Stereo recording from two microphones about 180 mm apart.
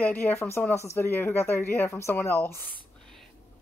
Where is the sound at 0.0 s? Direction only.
10° left (ahead or behind).